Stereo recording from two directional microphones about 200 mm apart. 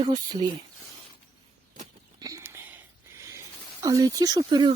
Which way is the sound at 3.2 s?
15° right (ahead or behind).